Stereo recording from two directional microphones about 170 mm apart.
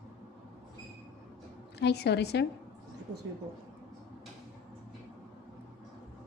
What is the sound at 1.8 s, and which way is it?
Speech, 75° left (ahead or behind).